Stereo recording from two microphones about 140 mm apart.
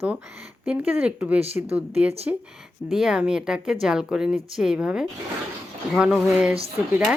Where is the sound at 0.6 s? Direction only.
10° right (ahead or behind).